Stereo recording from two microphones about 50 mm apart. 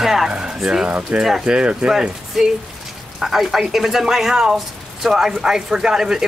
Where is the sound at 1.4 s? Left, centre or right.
Right.